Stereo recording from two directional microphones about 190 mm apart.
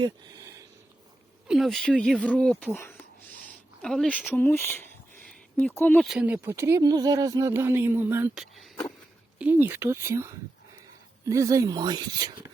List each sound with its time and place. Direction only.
1.5 s speech: centre (ahead or behind)
3.8 s speech: 5° left (ahead or behind)
6.1 s speech: 5° right (ahead or behind)
8.5 s speech: centre (ahead or behind)
11.3 s speech: 15° right (ahead or behind)